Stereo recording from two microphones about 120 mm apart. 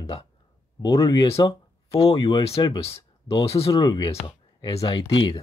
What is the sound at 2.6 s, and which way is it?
Speech, 55° left (ahead or behind).